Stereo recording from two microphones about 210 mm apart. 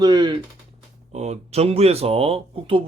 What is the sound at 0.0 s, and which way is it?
Speech, 20° right (ahead or behind).